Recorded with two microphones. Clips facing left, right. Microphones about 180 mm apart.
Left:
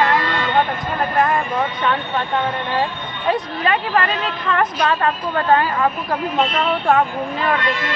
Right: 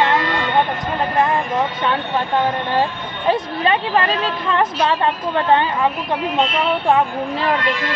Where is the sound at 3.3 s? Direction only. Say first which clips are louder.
Right 2 dB; 30° right (ahead or behind).